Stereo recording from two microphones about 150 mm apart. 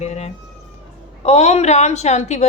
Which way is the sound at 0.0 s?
45° left (ahead or behind).